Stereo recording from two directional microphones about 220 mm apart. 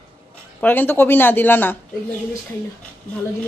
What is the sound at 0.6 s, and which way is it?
Speech, 10° left (ahead or behind).